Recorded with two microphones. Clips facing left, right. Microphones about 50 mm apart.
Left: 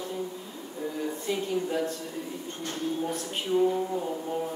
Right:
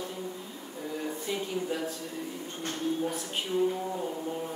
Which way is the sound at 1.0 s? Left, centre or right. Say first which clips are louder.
Left 3 dB; centre.